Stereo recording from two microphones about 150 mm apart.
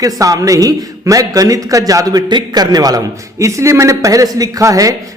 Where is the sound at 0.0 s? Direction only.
25° right (ahead or behind).